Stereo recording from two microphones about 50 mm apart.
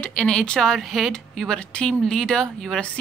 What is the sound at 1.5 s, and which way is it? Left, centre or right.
Speech, left.